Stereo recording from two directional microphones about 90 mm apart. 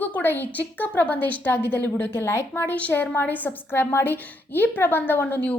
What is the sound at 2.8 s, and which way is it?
A woman's voice, 15° left (ahead or behind).